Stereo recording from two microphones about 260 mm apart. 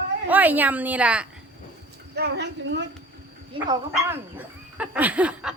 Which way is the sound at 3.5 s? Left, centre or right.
Centre.